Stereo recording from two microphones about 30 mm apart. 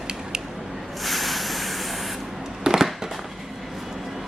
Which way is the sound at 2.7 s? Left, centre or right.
Right.